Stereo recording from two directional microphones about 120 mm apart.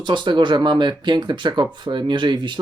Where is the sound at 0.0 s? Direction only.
40° right (ahead or behind).